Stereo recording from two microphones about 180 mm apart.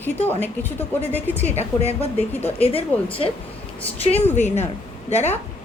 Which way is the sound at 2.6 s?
30° left (ahead or behind).